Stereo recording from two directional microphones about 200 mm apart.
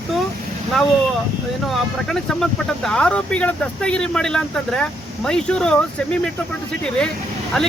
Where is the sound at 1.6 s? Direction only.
Centre (ahead or behind).